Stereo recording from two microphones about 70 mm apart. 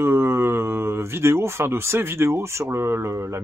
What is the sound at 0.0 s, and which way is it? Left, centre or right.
Speech, right.